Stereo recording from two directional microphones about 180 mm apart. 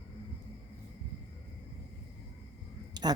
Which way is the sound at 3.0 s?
25° right (ahead or behind).